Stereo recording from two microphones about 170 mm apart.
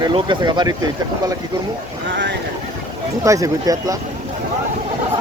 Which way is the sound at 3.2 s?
20° right (ahead or behind).